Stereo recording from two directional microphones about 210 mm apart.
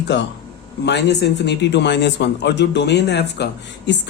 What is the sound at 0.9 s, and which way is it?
Speech, 55° left (ahead or behind).